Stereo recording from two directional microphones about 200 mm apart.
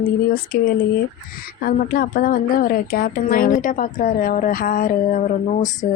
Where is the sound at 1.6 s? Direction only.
45° left (ahead or behind).